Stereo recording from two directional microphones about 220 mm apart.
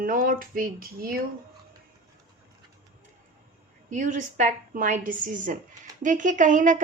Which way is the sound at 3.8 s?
35° right (ahead or behind).